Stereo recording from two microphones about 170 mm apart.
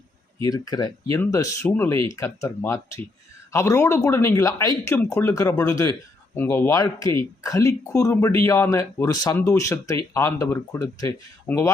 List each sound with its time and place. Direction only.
0.4 s speech: 20° left (ahead or behind)